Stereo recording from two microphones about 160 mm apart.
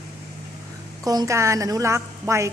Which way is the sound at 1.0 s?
20° right (ahead or behind).